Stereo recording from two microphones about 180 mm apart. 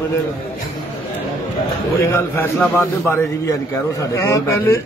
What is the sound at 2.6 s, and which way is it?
Speech, 10° left (ahead or behind).